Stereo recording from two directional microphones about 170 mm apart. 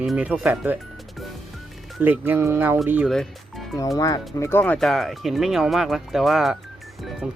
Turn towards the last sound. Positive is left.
turn(degrees=-5)  # may be behind; listen again after turning